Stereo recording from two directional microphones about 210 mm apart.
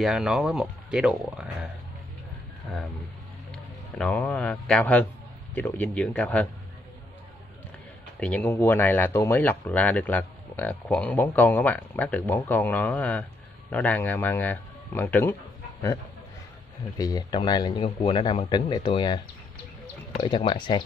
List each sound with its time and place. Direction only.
0.0 s speech: centre (ahead or behind)
3.5 s music: centre (ahead or behind)
4.2 s speech: 10° left (ahead or behind)
8.2 s a man's voice: 5° left (ahead or behind)
17.0 s a man's voice: 20° left (ahead or behind)